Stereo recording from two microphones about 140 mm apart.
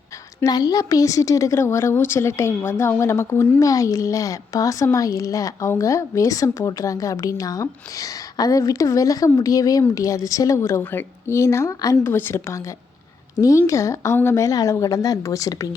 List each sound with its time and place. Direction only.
0.3 s a woman's voice: 25° left (ahead or behind)